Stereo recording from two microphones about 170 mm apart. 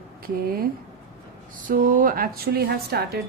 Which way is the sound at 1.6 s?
55° right (ahead or behind).